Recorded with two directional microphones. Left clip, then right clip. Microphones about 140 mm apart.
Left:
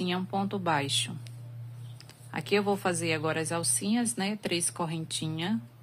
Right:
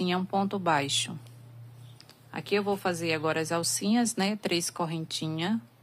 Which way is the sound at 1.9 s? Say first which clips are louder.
Left 2 dB; 10° right (ahead or behind).